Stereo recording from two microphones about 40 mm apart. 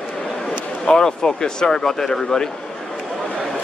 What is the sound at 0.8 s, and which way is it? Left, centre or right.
Speech, centre.